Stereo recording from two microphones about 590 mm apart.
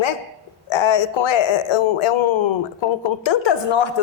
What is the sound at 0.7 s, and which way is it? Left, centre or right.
Speech, left.